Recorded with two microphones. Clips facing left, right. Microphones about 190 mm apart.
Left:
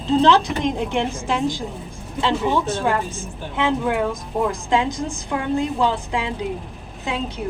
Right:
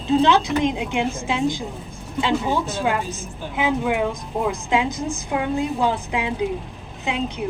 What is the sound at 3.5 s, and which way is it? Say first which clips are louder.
A woman's voice: left 1 dB; 10° right (ahead or behind).